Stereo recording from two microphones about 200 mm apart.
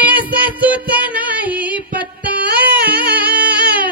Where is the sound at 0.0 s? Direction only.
10° right (ahead or behind).